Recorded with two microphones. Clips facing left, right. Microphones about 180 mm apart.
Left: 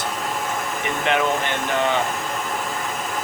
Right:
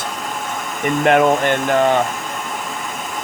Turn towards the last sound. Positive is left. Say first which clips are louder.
# even
turn(degrees=0)  # may be behind; listen again after turning